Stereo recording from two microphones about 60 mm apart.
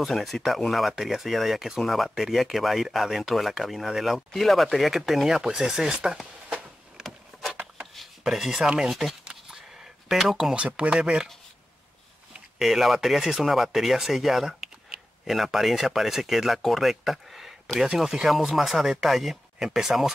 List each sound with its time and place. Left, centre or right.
0.0 s speech: centre
8.2 s speech: centre
9.2 s a sound: centre
10.0 s speech: centre
10.5 s speech: centre
12.5 s speech: centre